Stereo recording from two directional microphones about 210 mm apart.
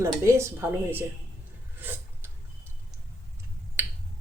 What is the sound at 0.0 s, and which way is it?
A woman's voice, 15° right (ahead or behind).